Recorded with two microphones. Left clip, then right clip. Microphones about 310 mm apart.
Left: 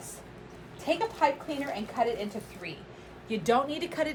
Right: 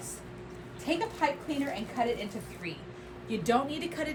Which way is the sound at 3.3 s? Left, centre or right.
Left.